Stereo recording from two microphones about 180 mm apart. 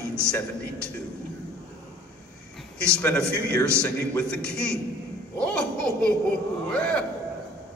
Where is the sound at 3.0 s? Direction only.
5° left (ahead or behind).